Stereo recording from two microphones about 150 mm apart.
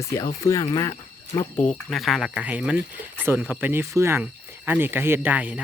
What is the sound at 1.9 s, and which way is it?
Speech, centre (ahead or behind).